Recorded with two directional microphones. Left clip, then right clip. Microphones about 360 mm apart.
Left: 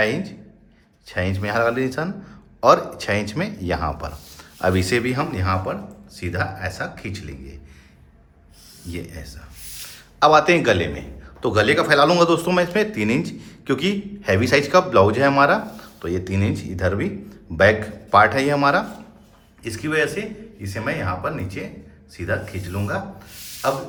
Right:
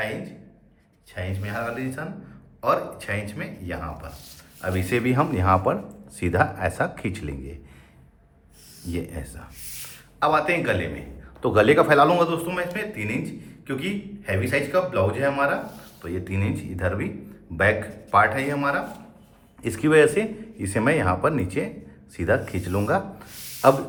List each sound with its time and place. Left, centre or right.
1.0 s a man's voice: centre
8.9 s speech: centre
10.2 s a man's voice: centre
19.6 s speech: centre